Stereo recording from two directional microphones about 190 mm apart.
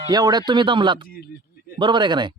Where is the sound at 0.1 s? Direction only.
20° right (ahead or behind).